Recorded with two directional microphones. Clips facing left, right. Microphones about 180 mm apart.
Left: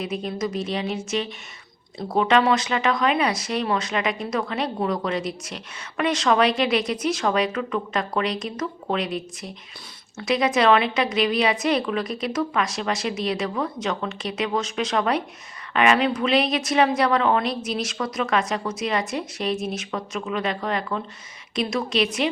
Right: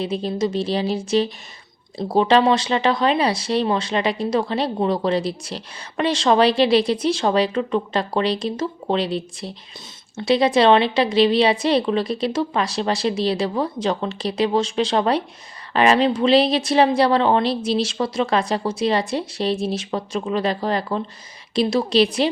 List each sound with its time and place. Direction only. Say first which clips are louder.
0.0 s speech: right 5 dB; 30° right (ahead or behind)